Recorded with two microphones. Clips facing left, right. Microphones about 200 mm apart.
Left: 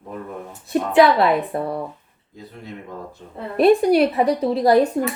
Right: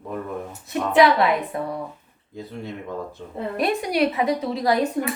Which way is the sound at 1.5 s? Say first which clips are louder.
Left 3 dB; 30° left (ahead or behind).